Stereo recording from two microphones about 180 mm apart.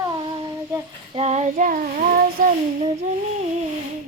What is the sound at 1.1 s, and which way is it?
Child singing, 40° right (ahead or behind).